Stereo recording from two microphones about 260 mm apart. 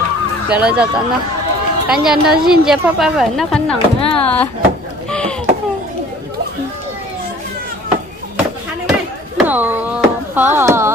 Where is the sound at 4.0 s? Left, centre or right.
Left.